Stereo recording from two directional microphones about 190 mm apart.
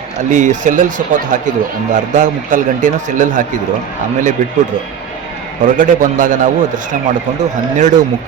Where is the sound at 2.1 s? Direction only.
40° right (ahead or behind).